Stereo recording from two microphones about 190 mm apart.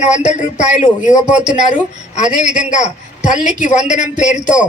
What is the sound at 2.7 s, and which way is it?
A man's voice, 40° left (ahead or behind).